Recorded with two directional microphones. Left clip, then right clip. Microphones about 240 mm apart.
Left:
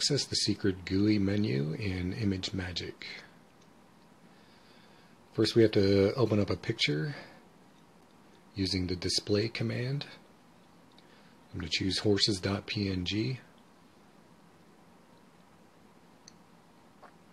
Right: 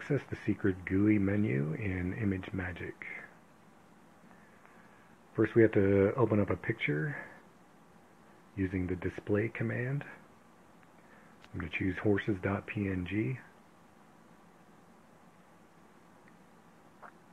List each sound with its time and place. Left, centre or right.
0.1 s speech: left
5.3 s speech: left
8.5 s speech: left
11.5 s speech: left